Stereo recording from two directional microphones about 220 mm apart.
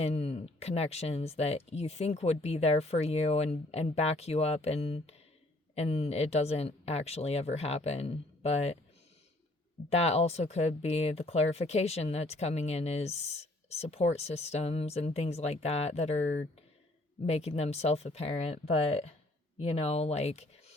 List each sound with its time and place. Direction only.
0.0 s speech: 30° left (ahead or behind)
9.9 s speech: 30° left (ahead or behind)